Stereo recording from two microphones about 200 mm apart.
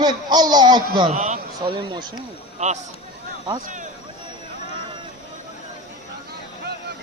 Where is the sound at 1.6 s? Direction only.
20° right (ahead or behind).